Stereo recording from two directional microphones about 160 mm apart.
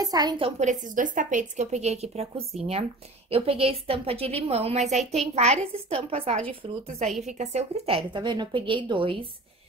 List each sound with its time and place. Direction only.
0.0 s a woman's voice: 25° right (ahead or behind)
0.6 s a woman's voice: 50° right (ahead or behind); by 9.2 s 30° right (ahead or behind)